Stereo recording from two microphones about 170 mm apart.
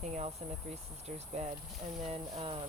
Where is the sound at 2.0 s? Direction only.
35° right (ahead or behind).